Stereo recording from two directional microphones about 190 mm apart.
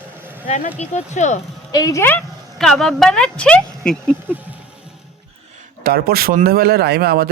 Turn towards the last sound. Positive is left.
turn(degrees=-55)  # may be behind; listen again after turning